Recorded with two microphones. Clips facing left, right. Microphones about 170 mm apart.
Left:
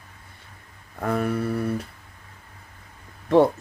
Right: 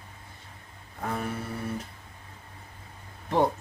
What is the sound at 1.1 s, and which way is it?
Speech, 70° left (ahead or behind).